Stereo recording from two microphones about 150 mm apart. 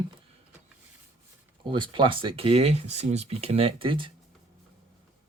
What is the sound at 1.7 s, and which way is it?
Speech, 30° right (ahead or behind).